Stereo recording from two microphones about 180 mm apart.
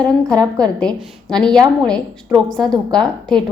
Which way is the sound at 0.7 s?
5° left (ahead or behind).